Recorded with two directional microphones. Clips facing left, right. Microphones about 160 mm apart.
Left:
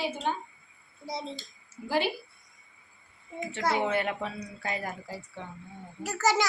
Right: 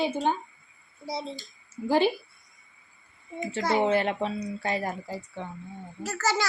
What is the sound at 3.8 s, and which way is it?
A woman's voice, 30° right (ahead or behind).